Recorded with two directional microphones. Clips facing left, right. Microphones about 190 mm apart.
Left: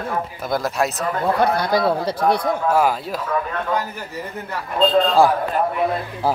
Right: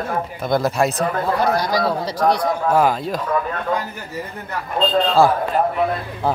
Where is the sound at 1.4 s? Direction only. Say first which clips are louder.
Left 1 dB; 55° left (ahead or behind).